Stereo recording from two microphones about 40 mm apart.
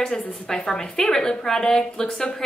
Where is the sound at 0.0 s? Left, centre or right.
Left.